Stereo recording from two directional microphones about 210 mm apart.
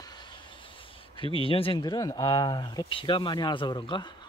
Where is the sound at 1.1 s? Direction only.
25° left (ahead or behind).